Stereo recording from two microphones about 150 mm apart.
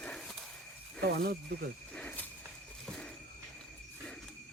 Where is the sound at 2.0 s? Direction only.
10° left (ahead or behind).